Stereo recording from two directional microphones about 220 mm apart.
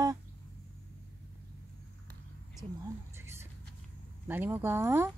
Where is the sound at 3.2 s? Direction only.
10° right (ahead or behind).